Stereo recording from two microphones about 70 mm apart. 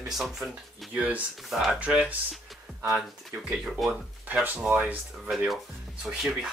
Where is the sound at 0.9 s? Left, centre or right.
Centre.